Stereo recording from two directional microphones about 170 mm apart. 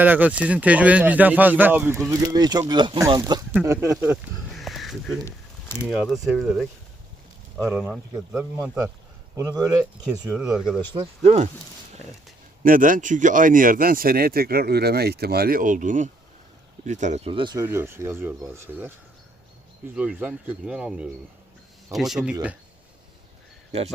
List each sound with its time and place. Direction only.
0.0 s speech: 10° right (ahead or behind)
3.5 s speech: 15° right (ahead or behind)
4.0 s a sound: 5° right (ahead or behind)
5.9 s speech: 5° right (ahead or behind)
7.9 s speech: 5° right (ahead or behind)
9.3 s speech: 20° right (ahead or behind)
10.1 s speech: 10° right (ahead or behind)
11.2 s speech: 40° right (ahead or behind)
12.6 s speech: 55° right (ahead or behind); by 17.7 s 25° right (ahead or behind)
17.7 s speech: 15° right (ahead or behind)
20.0 s speech: 10° right (ahead or behind)